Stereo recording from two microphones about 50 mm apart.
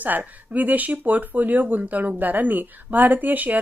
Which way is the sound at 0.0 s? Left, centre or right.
Right.